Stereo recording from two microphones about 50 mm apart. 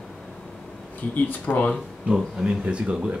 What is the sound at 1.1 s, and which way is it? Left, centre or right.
Speech, left.